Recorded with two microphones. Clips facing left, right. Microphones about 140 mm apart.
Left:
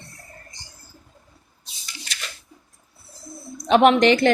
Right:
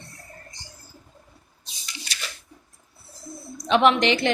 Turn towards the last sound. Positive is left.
turn(degrees=45)  # may be behind; listen again after turning